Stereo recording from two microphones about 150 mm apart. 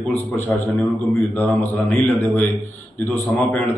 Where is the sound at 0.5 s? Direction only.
5° left (ahead or behind).